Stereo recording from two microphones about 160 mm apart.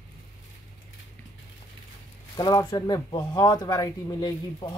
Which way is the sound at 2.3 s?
20° left (ahead or behind).